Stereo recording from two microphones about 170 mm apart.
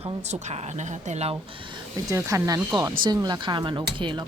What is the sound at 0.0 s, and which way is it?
A woman's voice, 40° right (ahead or behind).